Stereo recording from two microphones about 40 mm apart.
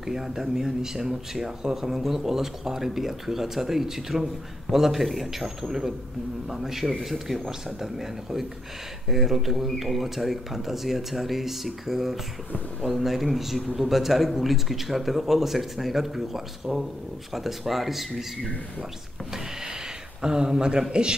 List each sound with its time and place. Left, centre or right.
0.0 s speech: centre
20.2 s speech: centre